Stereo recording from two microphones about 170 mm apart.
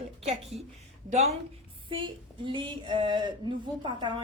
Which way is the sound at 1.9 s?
30° right (ahead or behind).